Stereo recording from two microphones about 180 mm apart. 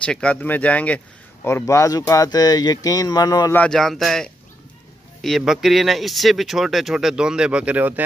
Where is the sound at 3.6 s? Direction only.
5° left (ahead or behind).